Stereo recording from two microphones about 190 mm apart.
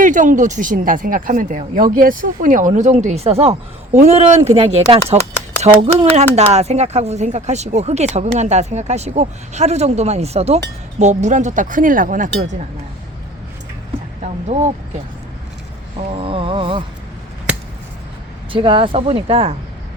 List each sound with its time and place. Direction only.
0.0 s speech: 40° right (ahead or behind)
14.2 s a sound: 35° right (ahead or behind)
16.0 s speech: 30° right (ahead or behind)
18.5 s speech: 25° right (ahead or behind)